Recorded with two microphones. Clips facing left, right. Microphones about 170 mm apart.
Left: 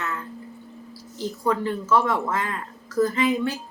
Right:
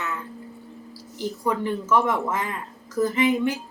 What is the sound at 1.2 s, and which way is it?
Speech, 15° right (ahead or behind).